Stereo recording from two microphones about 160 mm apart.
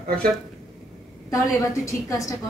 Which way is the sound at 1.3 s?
20° left (ahead or behind).